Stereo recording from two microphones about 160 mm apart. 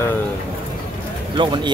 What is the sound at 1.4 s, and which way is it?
Speech, 30° right (ahead or behind).